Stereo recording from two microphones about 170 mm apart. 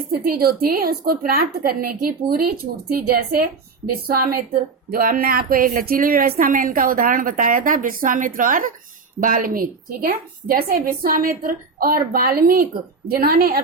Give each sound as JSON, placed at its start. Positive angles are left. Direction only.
{"t": 0.3, "sound": "speech", "side_deg": -60}